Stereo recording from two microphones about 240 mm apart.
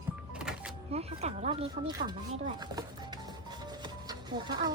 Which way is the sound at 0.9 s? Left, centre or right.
Right.